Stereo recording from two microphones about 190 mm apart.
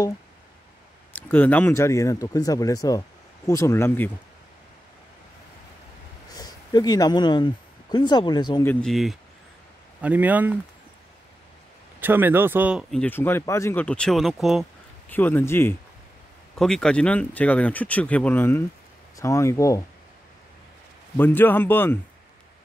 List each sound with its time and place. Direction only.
1.1 s speech: 10° left (ahead or behind)
6.3 s speech: 20° left (ahead or behind)
8.6 s speech: centre (ahead or behind)
12.0 s speech: 10° right (ahead or behind)
13.0 s speech: 10° left (ahead or behind)
15.0 s speech: 10° left (ahead or behind)
21.2 s speech: 10° left (ahead or behind)